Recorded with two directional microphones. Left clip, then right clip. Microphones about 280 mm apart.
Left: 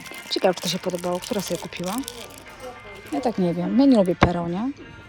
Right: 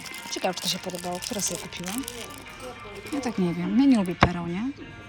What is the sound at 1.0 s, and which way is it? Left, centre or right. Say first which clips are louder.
Speech: left 5 dB; left.